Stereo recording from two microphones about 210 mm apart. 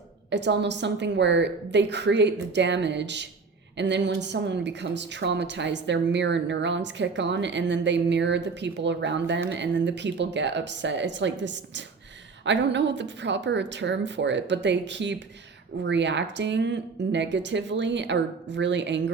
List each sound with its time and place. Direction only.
0.3 s a woman's voice: 55° right (ahead or behind)